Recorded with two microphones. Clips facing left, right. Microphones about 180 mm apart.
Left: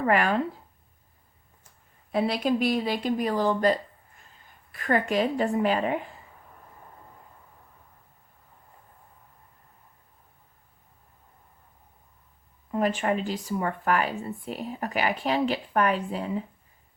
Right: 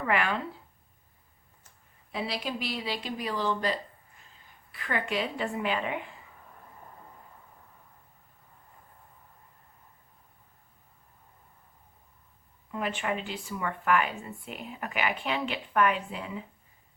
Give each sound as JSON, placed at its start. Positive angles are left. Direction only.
{"t": 0.0, "sound": "speech", "side_deg": 40}
{"t": 2.1, "sound": "speech", "side_deg": 50}
{"t": 12.7, "sound": "speech", "side_deg": 40}